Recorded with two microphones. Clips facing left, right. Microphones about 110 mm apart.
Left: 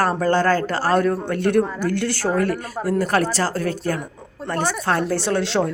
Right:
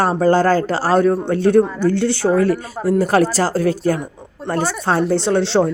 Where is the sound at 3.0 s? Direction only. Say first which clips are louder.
Right 5 dB; 30° right (ahead or behind).